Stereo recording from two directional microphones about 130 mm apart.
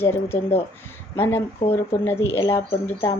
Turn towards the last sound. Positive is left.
turn(degrees=20)  # may be behind; listen again after turning